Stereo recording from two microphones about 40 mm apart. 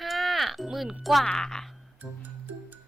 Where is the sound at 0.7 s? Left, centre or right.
Centre.